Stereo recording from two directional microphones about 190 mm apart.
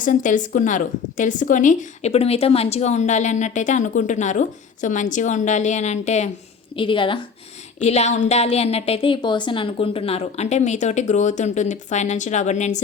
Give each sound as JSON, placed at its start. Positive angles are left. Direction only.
{"t": 0.0, "sound": "a woman's voice", "side_deg": 45}
{"t": 6.7, "sound": "a woman's voice", "side_deg": 25}